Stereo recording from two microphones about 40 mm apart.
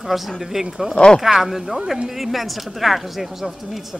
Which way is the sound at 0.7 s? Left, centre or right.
Right.